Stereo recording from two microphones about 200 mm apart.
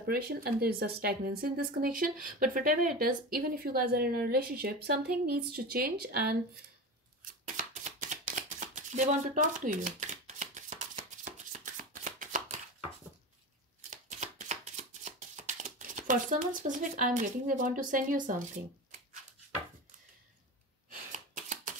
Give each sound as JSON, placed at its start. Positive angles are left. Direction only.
{"t": 0.0, "sound": "speech", "side_deg": -50}
{"t": 7.4, "sound": "shuffling cards", "side_deg": -40}
{"t": 13.8, "sound": "shuffling cards", "side_deg": -40}
{"t": 20.9, "sound": "shuffling cards", "side_deg": -40}